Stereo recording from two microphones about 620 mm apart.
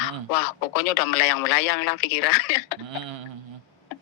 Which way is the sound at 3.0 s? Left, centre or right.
Right.